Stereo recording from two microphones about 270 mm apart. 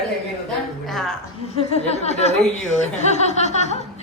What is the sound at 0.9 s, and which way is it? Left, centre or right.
Speech, centre.